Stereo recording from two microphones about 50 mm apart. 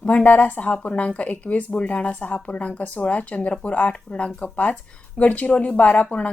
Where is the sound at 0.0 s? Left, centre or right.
Left.